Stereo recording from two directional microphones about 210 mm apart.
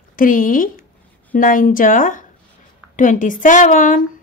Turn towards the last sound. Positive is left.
turn(degrees=40)  # may be behind; listen again after turning